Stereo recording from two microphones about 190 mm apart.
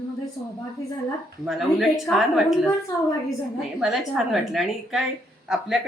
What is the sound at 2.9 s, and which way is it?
Speech, 20° left (ahead or behind).